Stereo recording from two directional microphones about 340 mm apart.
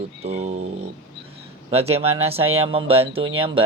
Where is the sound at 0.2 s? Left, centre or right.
Centre.